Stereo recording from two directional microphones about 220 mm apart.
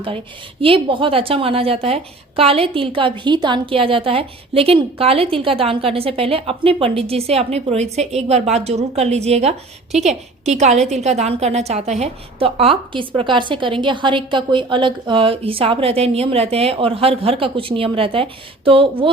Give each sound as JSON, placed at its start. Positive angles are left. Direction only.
{"t": 0.6, "sound": "a woman's voice", "side_deg": -25}